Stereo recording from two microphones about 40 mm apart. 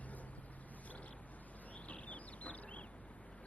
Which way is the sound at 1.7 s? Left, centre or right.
Left.